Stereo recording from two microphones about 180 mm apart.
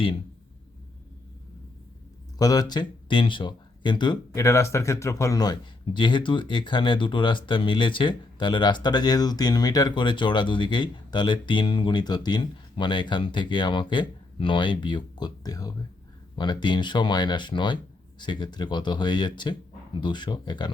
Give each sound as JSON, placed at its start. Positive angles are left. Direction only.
{"t": 2.4, "sound": "speech", "side_deg": 20}